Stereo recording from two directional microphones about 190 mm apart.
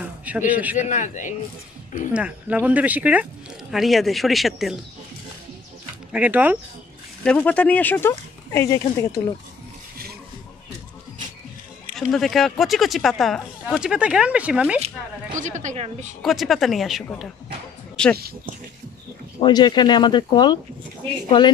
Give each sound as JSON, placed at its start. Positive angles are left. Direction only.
{"t": 0.0, "sound": "a sound", "side_deg": -10}
{"t": 0.5, "sound": "speech", "side_deg": -10}
{"t": 0.7, "sound": "a man's voice", "side_deg": 40}
{"t": 2.1, "sound": "speech", "side_deg": -5}
{"t": 6.1, "sound": "speech", "side_deg": -10}
{"t": 7.2, "sound": "speech", "side_deg": 5}
{"t": 11.9, "sound": "speech", "side_deg": 0}
{"t": 15.3, "sound": "a woman's voice", "side_deg": -40}
{"t": 16.2, "sound": "speech", "side_deg": 0}
{"t": 19.4, "sound": "speech", "side_deg": 25}